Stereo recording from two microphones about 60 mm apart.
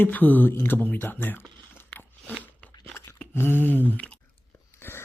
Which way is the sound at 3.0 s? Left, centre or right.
Left.